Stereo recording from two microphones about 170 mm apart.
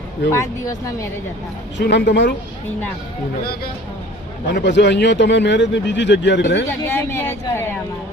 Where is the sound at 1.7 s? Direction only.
90° left.